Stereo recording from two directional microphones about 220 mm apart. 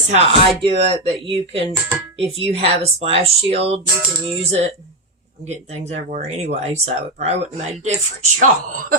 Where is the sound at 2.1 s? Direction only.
25° right (ahead or behind).